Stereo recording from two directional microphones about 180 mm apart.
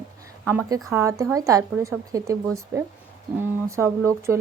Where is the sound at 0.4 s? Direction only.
15° right (ahead or behind).